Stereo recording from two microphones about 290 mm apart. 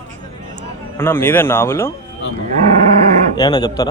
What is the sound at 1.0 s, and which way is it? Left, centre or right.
Speech, centre.